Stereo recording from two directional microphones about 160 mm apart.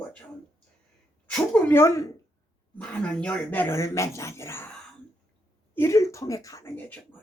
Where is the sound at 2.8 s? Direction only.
5° left (ahead or behind).